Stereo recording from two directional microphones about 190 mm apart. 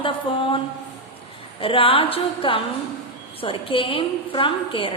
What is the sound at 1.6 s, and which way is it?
A woman's voice, 30° left (ahead or behind).